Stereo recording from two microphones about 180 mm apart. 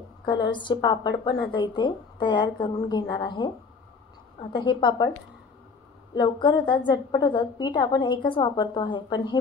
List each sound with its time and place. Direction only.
0.2 s speech: 25° left (ahead or behind)
6.1 s speech: 25° left (ahead or behind)